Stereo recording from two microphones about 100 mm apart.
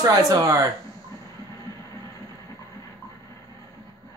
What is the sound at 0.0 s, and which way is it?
Speech, 35° right (ahead or behind).